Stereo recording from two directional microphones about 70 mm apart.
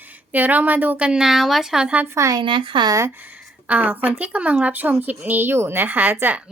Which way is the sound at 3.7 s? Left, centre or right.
Right.